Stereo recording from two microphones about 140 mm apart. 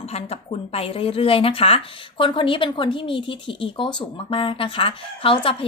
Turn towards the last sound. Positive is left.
turn(degrees=40)  # may be behind; listen again after turning